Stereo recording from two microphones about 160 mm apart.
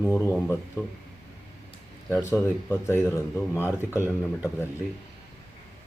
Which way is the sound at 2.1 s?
20° left (ahead or behind).